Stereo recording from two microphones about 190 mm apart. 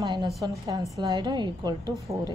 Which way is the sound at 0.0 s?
20° right (ahead or behind).